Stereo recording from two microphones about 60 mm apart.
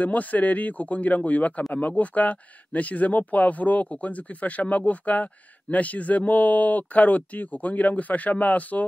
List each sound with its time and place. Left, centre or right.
0.0 s speech: left